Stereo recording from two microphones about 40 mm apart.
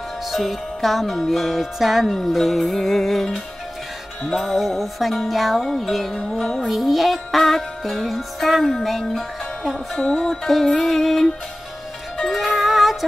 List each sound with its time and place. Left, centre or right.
0.3 s music: centre
6.7 s music: centre
9.9 s music: left
10.5 s music: centre